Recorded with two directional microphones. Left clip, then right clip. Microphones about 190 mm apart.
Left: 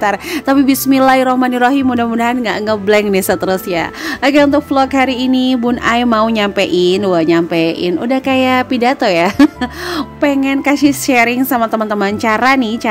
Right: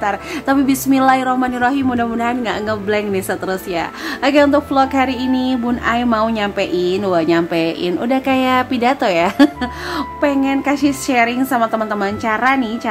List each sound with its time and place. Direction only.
0.0 s speech: 40° left (ahead or behind)